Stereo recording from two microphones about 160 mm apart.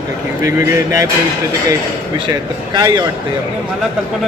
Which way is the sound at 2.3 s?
25° right (ahead or behind).